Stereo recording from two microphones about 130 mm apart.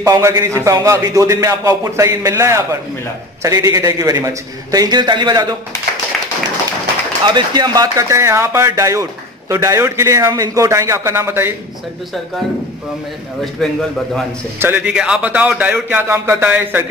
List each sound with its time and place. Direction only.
0.0 s a man's voice: 25° right (ahead or behind)
7.2 s a man's voice: 35° right (ahead or behind); by 11.5 s 20° right (ahead or behind)
13.4 s a man's voice: 5° left (ahead or behind)
14.6 s a man's voice: 10° right (ahead or behind)